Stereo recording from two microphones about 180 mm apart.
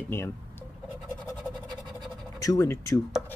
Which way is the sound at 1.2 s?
Centre (ahead or behind).